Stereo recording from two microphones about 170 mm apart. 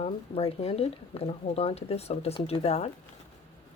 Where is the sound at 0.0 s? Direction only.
35° left (ahead or behind).